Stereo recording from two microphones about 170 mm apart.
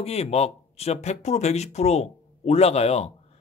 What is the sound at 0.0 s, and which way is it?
Speech, 40° left (ahead or behind).